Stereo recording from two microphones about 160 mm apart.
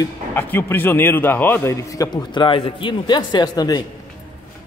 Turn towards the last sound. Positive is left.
turn(degrees=25)  # may be behind; listen again after turning